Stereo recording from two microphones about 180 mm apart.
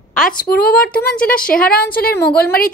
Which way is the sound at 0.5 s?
60° left (ahead or behind).